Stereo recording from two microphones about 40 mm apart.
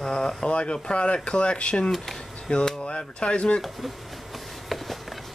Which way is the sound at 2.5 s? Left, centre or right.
Left.